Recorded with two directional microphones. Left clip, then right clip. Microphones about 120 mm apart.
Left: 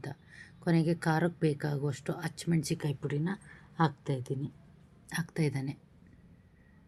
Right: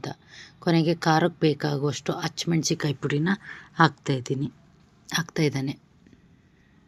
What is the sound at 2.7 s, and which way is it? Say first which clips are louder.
Speech: right 9 dB; 35° right (ahead or behind).